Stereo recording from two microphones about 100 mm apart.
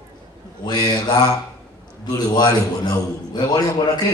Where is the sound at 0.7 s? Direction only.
40° left (ahead or behind).